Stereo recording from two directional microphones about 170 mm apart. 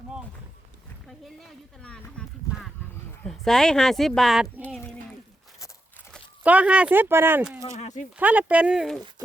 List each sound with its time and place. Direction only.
1.0 s speech: centre (ahead or behind)
3.2 s speech: centre (ahead or behind)
6.4 s speech: 10° right (ahead or behind)
7.8 s speech: 45° left (ahead or behind)
8.1 s speech: 10° right (ahead or behind)